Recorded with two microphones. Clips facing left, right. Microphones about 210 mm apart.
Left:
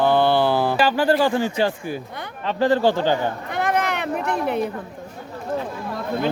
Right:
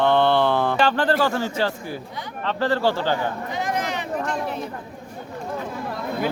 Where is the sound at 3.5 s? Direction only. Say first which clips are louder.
Left 6 dB; 60° left (ahead or behind).